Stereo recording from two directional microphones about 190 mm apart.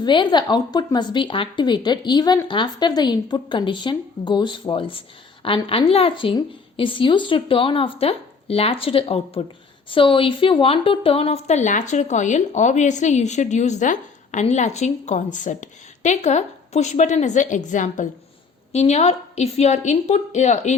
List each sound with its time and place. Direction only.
0.0 s a woman's voice: 25° left (ahead or behind)